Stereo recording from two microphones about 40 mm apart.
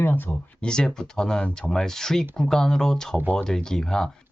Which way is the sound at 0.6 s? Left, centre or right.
Centre.